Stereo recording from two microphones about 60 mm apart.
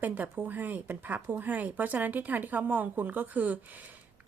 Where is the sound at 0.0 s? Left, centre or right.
Right.